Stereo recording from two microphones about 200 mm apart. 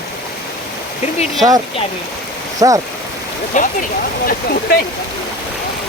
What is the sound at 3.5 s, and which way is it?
Speech, 40° left (ahead or behind).